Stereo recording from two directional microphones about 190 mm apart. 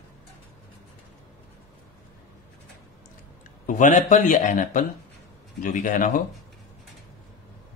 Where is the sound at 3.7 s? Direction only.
40° left (ahead or behind).